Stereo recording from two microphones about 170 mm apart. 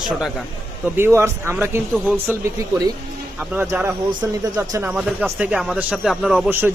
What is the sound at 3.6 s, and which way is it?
Speech, 15° right (ahead or behind).